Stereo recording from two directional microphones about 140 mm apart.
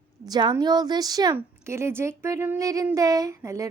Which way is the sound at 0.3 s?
30° right (ahead or behind).